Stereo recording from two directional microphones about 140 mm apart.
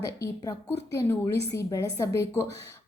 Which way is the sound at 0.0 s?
25° left (ahead or behind).